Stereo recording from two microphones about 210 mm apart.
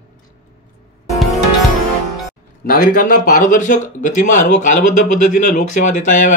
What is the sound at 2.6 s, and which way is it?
Speech, 45° left (ahead or behind).